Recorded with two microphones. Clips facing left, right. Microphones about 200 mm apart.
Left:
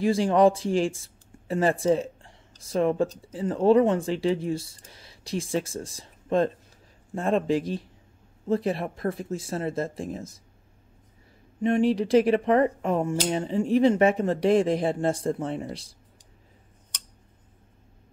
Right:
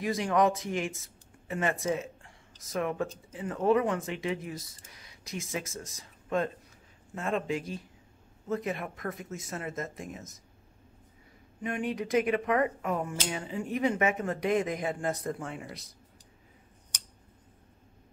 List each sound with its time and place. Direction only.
0.0 s speech: 30° left (ahead or behind)
11.6 s speech: 30° left (ahead or behind)